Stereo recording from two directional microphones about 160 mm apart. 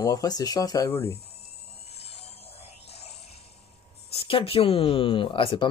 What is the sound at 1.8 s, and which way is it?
Music, 40° left (ahead or behind).